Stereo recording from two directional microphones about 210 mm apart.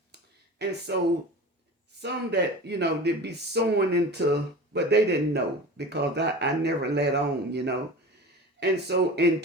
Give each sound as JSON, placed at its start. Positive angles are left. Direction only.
{"t": 0.6, "sound": "speech", "side_deg": -55}
{"t": 2.0, "sound": "speech", "side_deg": -55}